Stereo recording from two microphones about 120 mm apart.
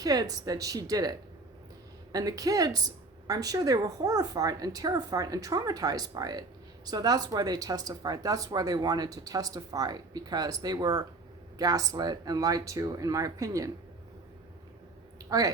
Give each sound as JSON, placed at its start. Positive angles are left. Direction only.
{"t": 0.0, "sound": "a woman's voice", "side_deg": -30}
{"t": 2.1, "sound": "a woman's voice", "side_deg": -30}